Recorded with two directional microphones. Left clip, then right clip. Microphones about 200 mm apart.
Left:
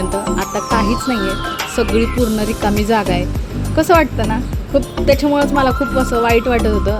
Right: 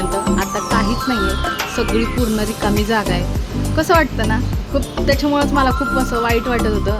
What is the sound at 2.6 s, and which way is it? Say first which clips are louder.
Speech: left 3 dB; 15° left (ahead or behind).